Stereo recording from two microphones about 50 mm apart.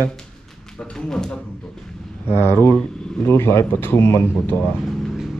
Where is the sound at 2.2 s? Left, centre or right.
Left.